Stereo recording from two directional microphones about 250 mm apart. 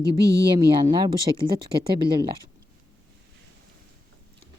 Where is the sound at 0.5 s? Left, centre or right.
Centre.